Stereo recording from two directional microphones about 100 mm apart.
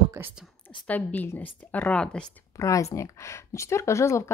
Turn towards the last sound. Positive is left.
turn(degrees=30)  # may be behind; listen again after turning